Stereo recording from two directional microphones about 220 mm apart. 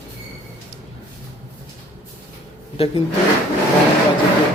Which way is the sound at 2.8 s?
25° left (ahead or behind).